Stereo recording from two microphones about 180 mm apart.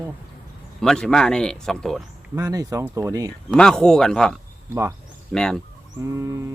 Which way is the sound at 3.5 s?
5° left (ahead or behind).